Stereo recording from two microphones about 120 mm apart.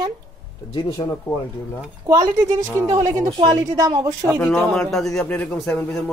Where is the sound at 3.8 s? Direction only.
35° right (ahead or behind).